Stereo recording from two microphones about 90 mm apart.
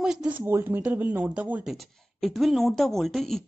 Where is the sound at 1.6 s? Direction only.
Centre (ahead or behind).